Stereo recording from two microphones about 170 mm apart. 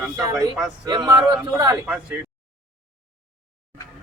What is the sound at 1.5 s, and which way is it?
Speech, 20° right (ahead or behind).